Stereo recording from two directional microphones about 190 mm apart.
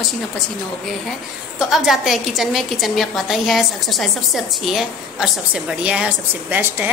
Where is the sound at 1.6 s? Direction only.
Centre (ahead or behind).